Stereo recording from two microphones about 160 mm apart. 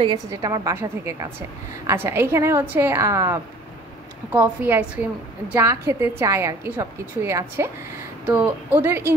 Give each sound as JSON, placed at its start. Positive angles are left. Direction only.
{"t": 0.3, "sound": "a woman's voice", "side_deg": -20}